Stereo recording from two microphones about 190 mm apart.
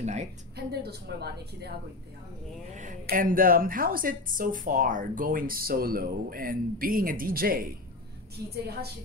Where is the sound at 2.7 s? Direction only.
40° right (ahead or behind).